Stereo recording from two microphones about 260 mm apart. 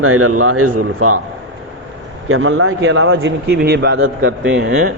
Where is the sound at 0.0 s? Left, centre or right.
Right.